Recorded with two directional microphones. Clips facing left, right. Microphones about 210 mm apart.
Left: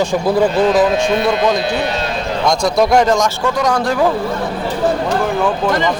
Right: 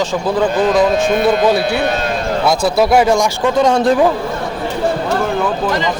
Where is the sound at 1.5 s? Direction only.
10° right (ahead or behind).